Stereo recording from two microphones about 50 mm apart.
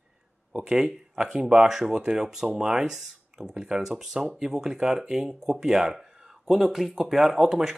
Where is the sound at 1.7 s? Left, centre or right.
Centre.